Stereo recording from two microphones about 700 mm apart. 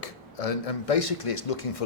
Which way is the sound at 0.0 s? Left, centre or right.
Left.